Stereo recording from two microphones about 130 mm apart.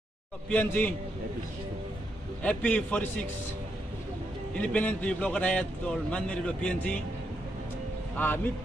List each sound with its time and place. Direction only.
0.5 s speech: 15° left (ahead or behind)
2.4 s speech: 10° left (ahead or behind)
4.6 s speech: 10° left (ahead or behind)
8.2 s speech: 15° left (ahead or behind)